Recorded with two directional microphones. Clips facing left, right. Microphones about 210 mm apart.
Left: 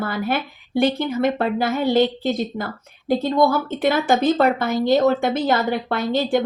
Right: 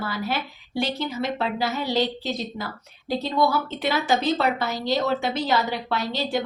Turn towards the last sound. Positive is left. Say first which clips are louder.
# left 6 dB
turn(degrees=50)  # may be behind; listen again after turning